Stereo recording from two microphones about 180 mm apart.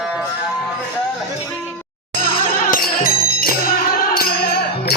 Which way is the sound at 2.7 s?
55° left (ahead or behind).